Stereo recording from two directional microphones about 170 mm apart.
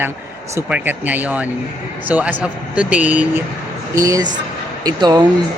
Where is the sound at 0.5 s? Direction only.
10° right (ahead or behind).